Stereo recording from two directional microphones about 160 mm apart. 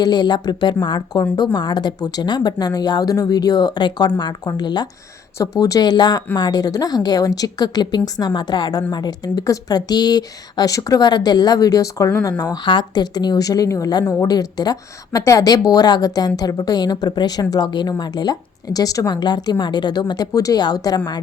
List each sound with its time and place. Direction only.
0.0 s a woman's voice: 25° left (ahead or behind)